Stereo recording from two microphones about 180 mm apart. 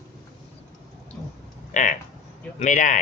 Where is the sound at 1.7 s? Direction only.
45° left (ahead or behind).